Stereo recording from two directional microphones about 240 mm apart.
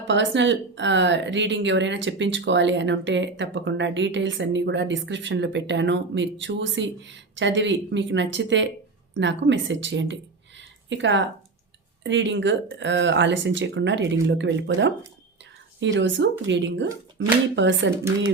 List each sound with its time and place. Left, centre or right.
0.1 s speech: right
10.6 s a sound: right
12.0 s speech: right